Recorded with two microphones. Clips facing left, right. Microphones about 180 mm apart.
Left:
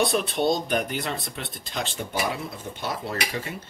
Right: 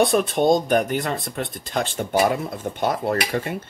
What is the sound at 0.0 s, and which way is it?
Speech, 50° right (ahead or behind).